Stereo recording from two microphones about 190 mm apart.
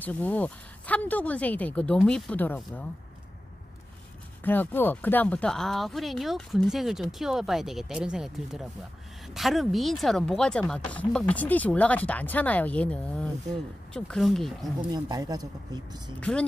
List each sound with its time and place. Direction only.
0.0 s speech: 10° left (ahead or behind)
4.4 s speech: 10° left (ahead or behind)
14.8 s speech: 20° right (ahead or behind)
16.2 s speech: 5° left (ahead or behind)